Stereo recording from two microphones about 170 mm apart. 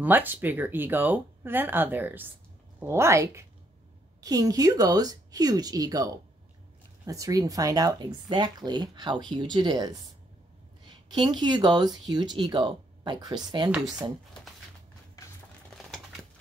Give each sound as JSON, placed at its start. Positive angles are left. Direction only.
{"t": 0.0, "sound": "speech", "side_deg": -10}